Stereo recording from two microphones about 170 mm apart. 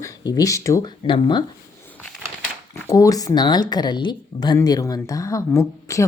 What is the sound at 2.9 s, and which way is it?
Speech, 20° left (ahead or behind).